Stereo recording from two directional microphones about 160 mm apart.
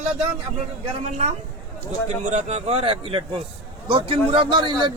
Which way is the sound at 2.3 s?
40° right (ahead or behind).